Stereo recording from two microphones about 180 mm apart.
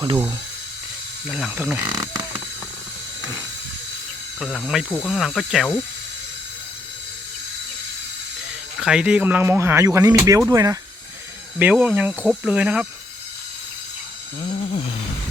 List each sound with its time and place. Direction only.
1.3 s speech: 5° right (ahead or behind)
4.4 s speech: centre (ahead or behind)
8.8 s speech: 5° right (ahead or behind)
11.6 s speech: 10° right (ahead or behind)